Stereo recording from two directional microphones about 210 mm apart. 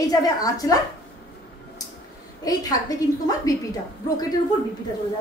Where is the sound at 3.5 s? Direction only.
15° left (ahead or behind).